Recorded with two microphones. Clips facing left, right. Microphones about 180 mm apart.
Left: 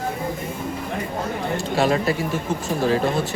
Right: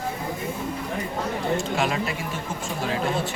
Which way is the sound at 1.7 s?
35° left (ahead or behind).